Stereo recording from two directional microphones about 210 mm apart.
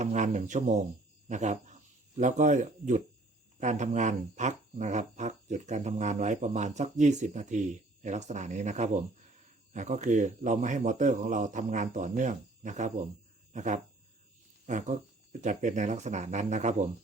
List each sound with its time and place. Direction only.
0.0 s frog: 35° right (ahead or behind)
1.3 s speech: 35° right (ahead or behind)
3.6 s frog: 35° right (ahead or behind)
13.5 s a sound: 35° right (ahead or behind)
14.7 s frog: 35° right (ahead or behind)